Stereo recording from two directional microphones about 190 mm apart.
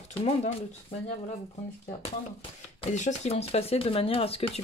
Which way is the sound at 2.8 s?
40° left (ahead or behind).